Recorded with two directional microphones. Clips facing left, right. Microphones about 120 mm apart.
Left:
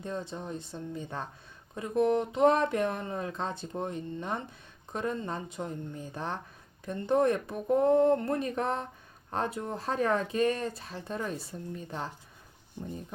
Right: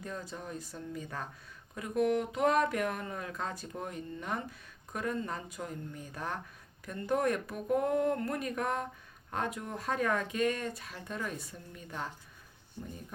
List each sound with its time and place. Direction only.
0.0 s speech: 25° left (ahead or behind)